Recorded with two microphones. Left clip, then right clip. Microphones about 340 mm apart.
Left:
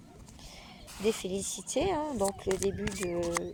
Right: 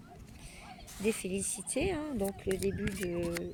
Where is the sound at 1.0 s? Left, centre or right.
Left.